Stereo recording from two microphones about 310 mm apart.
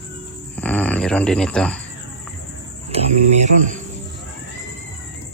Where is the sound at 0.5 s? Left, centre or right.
Centre.